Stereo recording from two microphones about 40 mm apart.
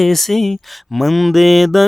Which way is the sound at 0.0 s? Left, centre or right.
Centre.